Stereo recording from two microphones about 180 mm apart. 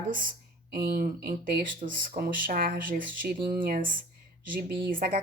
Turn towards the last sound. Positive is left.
turn(degrees=-55)  # may be behind; listen again after turning